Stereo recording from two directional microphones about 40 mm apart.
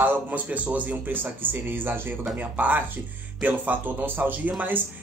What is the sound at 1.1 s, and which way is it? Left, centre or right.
Speech, right.